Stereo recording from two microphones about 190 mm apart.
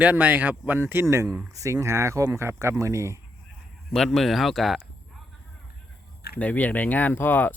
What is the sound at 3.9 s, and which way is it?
Speech, centre (ahead or behind).